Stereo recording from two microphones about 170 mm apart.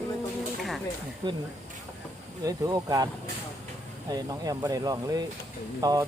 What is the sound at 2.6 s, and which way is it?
Speech, 20° right (ahead or behind).